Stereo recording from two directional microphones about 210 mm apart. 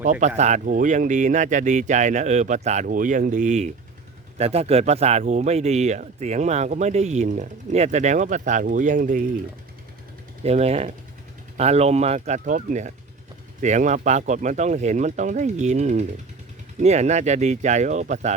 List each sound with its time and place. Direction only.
0.0 s speech: 35° right (ahead or behind)
10.4 s speech: 30° right (ahead or behind)